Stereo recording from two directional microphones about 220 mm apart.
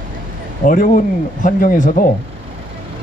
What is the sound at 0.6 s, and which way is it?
Speech, 35° left (ahead or behind).